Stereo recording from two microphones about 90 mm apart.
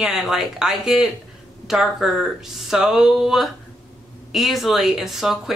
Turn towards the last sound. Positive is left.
turn(degrees=-5)  # may be behind; listen again after turning